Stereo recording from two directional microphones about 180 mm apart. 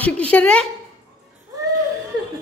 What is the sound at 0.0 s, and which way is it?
Speech, 5° left (ahead or behind).